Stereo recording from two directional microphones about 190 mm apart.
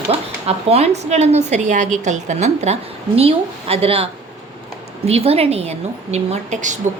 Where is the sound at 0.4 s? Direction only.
35° right (ahead or behind).